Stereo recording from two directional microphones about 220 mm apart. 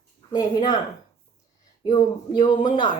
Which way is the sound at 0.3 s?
20° left (ahead or behind).